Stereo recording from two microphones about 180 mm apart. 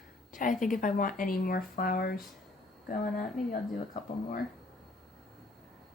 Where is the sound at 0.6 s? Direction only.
45° left (ahead or behind).